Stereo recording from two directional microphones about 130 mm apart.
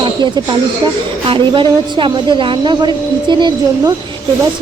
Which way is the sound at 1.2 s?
40° right (ahead or behind).